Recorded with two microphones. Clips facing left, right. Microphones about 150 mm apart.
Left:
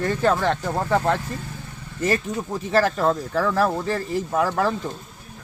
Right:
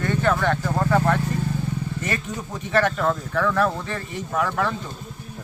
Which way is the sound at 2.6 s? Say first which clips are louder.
Left 1 dB; 35° left (ahead or behind).